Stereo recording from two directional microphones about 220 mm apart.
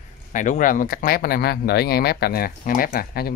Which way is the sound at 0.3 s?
35° left (ahead or behind).